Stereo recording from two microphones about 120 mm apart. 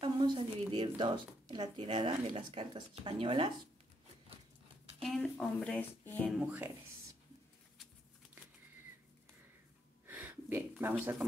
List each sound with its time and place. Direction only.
0.0 s speech: 40° right (ahead or behind)
5.0 s a woman's voice: centre (ahead or behind)
6.4 s speech: 20° right (ahead or behind)
10.0 s a sound: 15° right (ahead or behind)